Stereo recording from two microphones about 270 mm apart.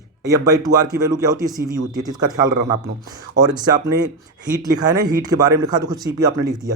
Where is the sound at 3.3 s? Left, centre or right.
Centre.